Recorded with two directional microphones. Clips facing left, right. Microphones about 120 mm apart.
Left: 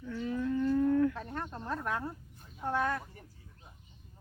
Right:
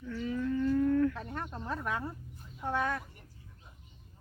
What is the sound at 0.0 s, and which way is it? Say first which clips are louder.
Livestock: even; 20° left (ahead or behind).